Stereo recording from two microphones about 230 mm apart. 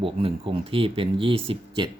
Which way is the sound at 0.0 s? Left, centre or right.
Right.